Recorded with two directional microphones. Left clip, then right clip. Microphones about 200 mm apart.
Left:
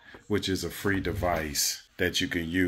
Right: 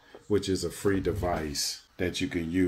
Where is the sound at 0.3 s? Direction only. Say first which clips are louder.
Right 1 dB; 10° left (ahead or behind).